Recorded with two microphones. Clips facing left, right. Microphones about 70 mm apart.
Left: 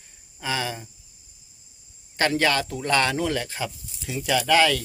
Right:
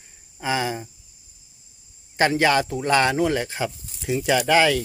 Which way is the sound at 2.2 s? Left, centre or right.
Centre.